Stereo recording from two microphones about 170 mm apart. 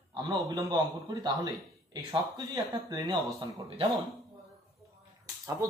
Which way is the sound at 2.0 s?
25° right (ahead or behind).